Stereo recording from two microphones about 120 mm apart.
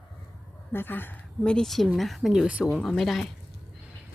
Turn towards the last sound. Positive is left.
turn(degrees=0)  # may be behind; listen again after turning